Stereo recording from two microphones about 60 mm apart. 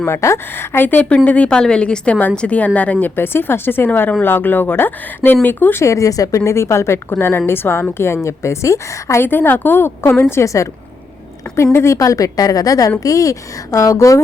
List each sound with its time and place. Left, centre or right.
0.1 s a woman's voice: left
0.5 s speech: left
0.9 s speech: left
1.5 s a woman's voice: centre
3.2 s speech: left
5.8 s a woman's voice: left
9.2 s a woman's voice: left
11.9 s a woman's voice: left
13.0 s a woman's voice: left